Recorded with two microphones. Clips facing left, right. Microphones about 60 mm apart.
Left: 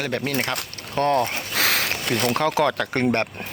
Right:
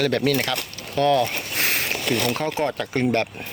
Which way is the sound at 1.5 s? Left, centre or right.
Left.